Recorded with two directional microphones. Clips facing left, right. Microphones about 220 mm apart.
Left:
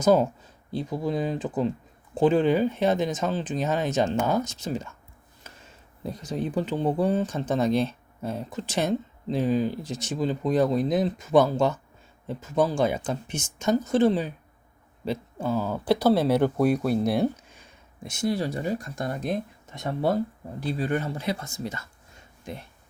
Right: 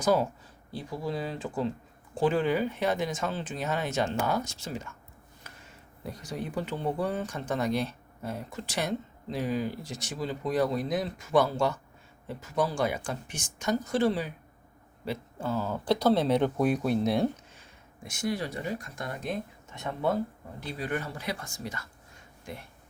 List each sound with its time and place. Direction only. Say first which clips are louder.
0.0 s speech: left 5 dB; 20° left (ahead or behind)
6.0 s speech: left 6 dB; 25° left (ahead or behind); by 17.2 s 5° left (ahead or behind)
17.5 s speech: left 1 dB; 20° left (ahead or behind)